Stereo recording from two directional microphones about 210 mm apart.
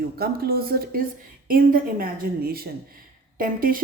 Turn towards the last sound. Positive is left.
turn(degrees=-45)  # may be behind; listen again after turning